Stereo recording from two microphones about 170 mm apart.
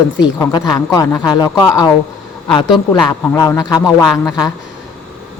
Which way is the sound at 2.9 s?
25° left (ahead or behind).